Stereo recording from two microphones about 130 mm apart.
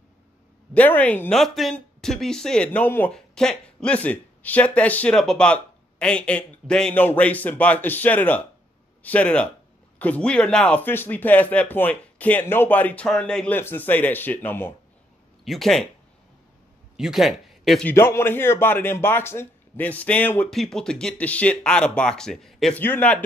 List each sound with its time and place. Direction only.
0.7 s speech: 10° left (ahead or behind)
1.3 s speech: centre (ahead or behind)
15.4 s speech: centre (ahead or behind)
16.9 s a man's voice: 5° right (ahead or behind)
17.8 s speech: 20° left (ahead or behind); by 22.8 s centre (ahead or behind)
22.8 s speech: 15° left (ahead or behind)